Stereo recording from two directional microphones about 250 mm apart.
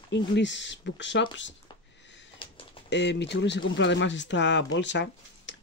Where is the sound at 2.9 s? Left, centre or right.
Left.